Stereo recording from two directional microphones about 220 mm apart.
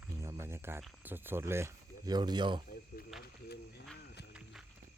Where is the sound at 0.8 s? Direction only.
10° right (ahead or behind).